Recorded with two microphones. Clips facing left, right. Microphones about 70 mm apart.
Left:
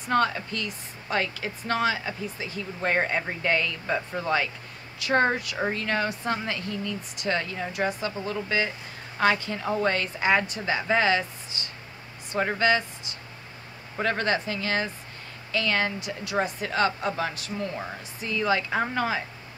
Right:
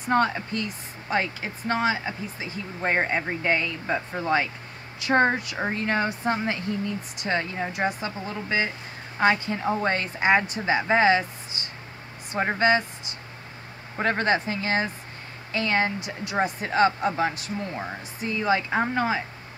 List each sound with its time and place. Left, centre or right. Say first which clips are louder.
0.1 s speech: right 1 dB; right
12.4 s speech: right 2 dB; right
13.9 s speech: right 2 dB; right